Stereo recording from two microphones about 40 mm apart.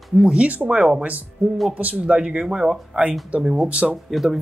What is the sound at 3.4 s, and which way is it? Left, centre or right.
Speech, centre.